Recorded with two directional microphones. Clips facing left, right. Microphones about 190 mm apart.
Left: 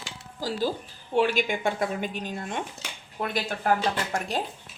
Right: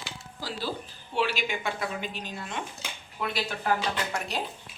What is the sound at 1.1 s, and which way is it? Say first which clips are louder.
Speech: left 5 dB; 50° left (ahead or behind).